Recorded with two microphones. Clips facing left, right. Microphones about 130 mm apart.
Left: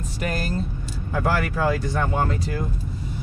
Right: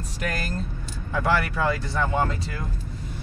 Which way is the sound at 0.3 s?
Centre (ahead or behind).